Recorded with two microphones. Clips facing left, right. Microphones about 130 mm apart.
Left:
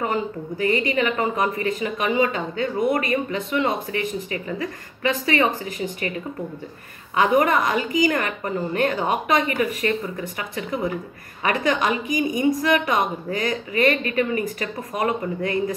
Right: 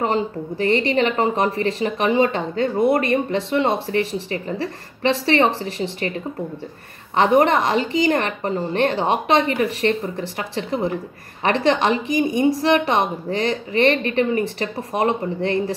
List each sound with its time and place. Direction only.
0.0 s a woman's voice: 30° right (ahead or behind)
7.2 s a woman's voice: 30° right (ahead or behind)